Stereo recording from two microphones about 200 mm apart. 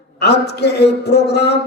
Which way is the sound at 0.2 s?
55° left (ahead or behind).